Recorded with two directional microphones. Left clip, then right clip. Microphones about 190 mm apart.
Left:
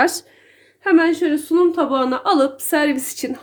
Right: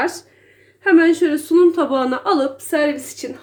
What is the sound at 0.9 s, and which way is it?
A woman's voice, 15° left (ahead or behind).